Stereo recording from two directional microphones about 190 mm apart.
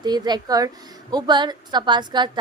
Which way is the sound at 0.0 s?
20° right (ahead or behind).